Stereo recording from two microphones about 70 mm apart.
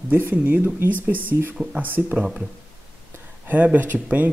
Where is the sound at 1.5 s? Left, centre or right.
Centre.